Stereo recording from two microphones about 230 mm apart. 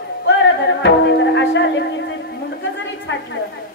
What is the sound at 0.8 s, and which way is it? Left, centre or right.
Music, left.